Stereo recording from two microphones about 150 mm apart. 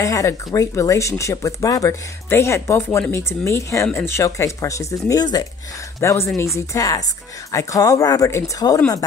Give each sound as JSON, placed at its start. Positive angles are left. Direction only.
{"t": 0.0, "sound": "speech", "side_deg": 20}